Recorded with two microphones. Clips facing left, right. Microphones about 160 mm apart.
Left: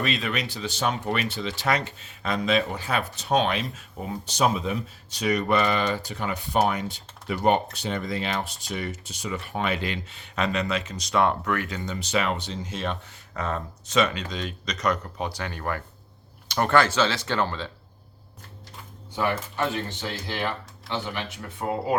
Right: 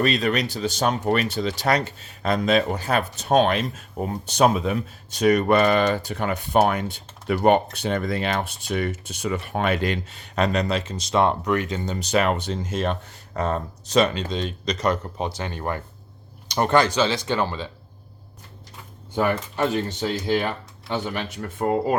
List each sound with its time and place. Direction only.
0.0 s speech: 40° right (ahead or behind); by 11.8 s 20° right (ahead or behind)
11.8 s speech: 40° right (ahead or behind); by 17.7 s 15° right (ahead or behind)
19.1 s speech: 50° right (ahead or behind)